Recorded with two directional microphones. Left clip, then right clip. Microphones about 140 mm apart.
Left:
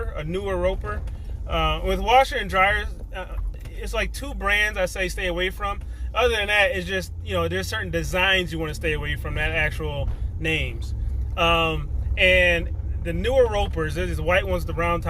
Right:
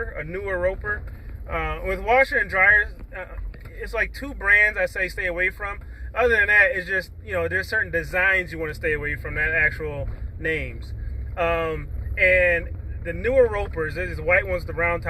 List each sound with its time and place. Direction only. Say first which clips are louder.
0.1 s speech: even; 15° left (ahead or behind)